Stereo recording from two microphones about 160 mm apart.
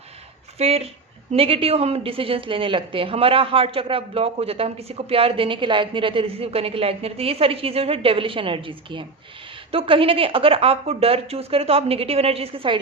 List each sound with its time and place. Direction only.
0.6 s a woman's voice: 40° right (ahead or behind)